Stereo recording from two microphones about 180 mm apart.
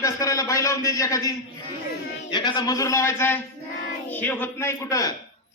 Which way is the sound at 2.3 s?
25° left (ahead or behind).